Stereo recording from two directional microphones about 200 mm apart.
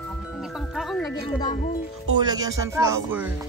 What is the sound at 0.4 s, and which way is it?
Music, centre (ahead or behind).